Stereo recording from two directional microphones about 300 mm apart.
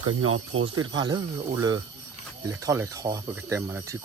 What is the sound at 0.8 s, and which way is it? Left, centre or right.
Speech, centre.